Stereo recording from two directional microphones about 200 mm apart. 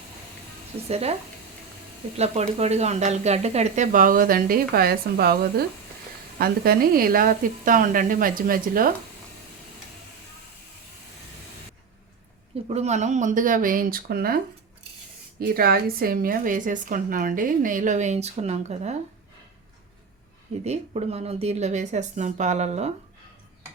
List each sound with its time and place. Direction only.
0.9 s a woman's voice: 30° right (ahead or behind)
2.1 s a woman's voice: 35° right (ahead or behind)
12.6 s a woman's voice: 35° right (ahead or behind); by 14.3 s 50° right (ahead or behind)
15.4 s a woman's voice: 50° right (ahead or behind)
20.7 s a woman's voice: 30° right (ahead or behind)